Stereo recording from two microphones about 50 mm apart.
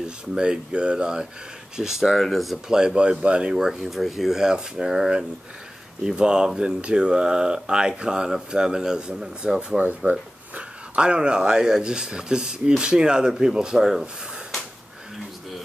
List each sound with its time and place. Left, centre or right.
0.0 s speech: centre
2.1 s speech: centre
2.7 s speech: centre
3.5 s speech: centre; by 10.1 s right
10.5 s speech: centre